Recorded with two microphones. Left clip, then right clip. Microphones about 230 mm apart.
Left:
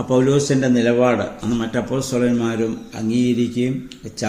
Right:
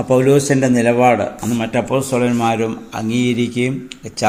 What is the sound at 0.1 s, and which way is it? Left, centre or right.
A man's voice, centre.